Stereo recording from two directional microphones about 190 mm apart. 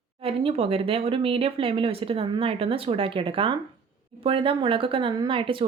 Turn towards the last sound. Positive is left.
turn(degrees=-30)  # may be behind; listen again after turning